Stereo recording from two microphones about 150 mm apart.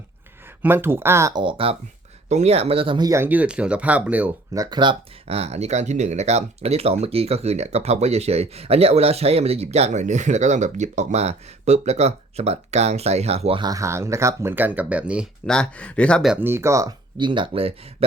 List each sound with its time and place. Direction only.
0.6 s speech: 15° right (ahead or behind)
1.4 s speech: 35° right (ahead or behind)
3.1 s speech: 15° right (ahead or behind)
4.5 s speech: 25° right (ahead or behind); by 13.6 s 45° right (ahead or behind)
13.6 s speech: 25° right (ahead or behind); by 15.3 s 10° right (ahead or behind)
15.4 s speech: 5° left (ahead or behind)
16.3 s speech: 15° right (ahead or behind); by 17.7 s 40° right (ahead or behind)